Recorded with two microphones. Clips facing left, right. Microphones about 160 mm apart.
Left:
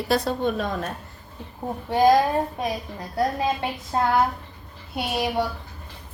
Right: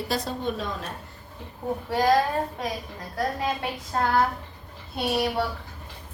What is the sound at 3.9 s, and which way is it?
Speech, 30° left (ahead or behind).